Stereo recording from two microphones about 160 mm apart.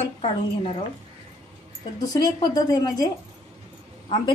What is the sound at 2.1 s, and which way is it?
Speech, 25° left (ahead or behind).